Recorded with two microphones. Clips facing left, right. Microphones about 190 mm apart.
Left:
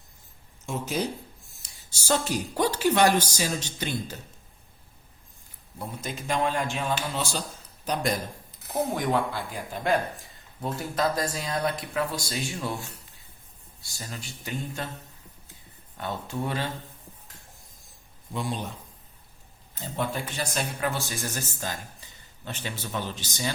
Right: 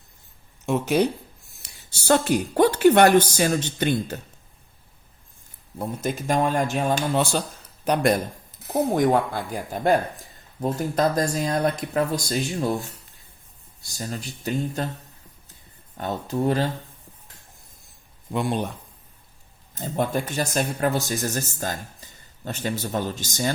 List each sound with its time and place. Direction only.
0.6 s speech: 65° right (ahead or behind)
5.8 s speech: 50° right (ahead or behind)
8.6 s speech: 45° right (ahead or behind)
13.8 s speech: 45° right (ahead or behind)
16.0 s speech: 40° right (ahead or behind)
18.3 s speech: 60° right (ahead or behind)
19.7 s speech: 50° right (ahead or behind)